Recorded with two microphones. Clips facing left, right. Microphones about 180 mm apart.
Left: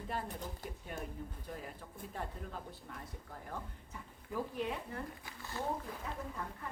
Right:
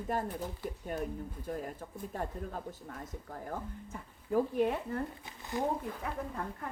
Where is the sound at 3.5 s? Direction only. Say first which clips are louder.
Right 6 dB; 45° right (ahead or behind).